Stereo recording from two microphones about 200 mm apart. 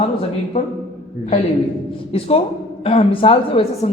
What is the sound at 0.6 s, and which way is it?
Speech, 35° left (ahead or behind).